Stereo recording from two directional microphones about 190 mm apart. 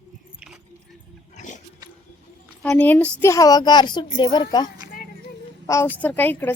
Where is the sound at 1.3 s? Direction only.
40° left (ahead or behind).